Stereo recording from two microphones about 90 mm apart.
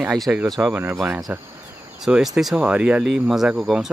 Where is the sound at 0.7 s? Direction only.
25° right (ahead or behind).